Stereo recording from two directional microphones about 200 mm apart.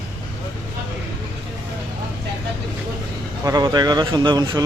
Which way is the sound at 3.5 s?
20° right (ahead or behind).